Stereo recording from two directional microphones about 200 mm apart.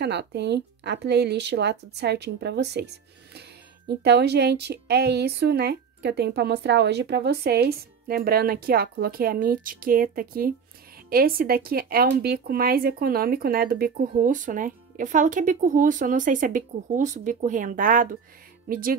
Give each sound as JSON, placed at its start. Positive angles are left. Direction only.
{"t": 0.0, "sound": "speech", "side_deg": -55}